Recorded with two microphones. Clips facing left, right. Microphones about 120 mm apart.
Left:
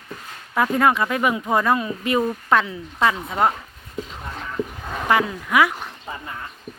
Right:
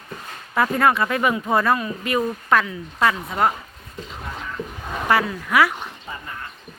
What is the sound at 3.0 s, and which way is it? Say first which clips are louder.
Speech: even; 5° left (ahead or behind).